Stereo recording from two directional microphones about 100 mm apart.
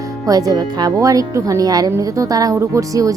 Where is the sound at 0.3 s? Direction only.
40° right (ahead or behind).